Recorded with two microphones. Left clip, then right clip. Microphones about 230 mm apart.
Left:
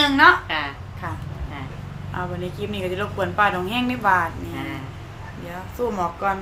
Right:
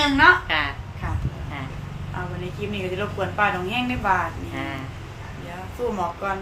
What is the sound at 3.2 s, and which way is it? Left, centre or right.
Speech, left.